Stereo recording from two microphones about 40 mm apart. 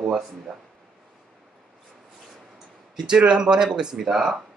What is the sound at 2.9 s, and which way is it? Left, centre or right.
Speech, right.